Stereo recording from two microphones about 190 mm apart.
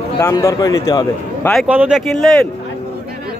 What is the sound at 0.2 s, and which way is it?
A man's voice, 15° left (ahead or behind).